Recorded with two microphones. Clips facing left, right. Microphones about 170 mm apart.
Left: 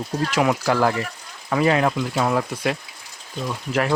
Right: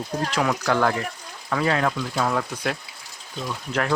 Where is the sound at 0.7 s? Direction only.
5° left (ahead or behind).